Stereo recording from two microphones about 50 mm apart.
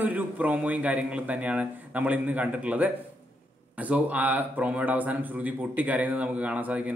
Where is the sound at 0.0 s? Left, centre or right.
Right.